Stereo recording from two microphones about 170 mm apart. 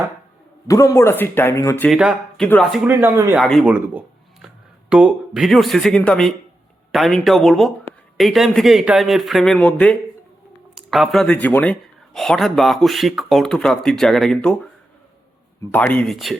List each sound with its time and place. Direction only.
0.7 s speech: 20° left (ahead or behind)
1.9 s speech: centre (ahead or behind)
3.3 s speech: centre (ahead or behind)
15.7 s speech: 10° left (ahead or behind)